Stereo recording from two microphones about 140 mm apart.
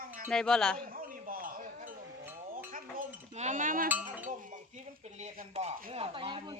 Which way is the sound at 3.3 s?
55° right (ahead or behind).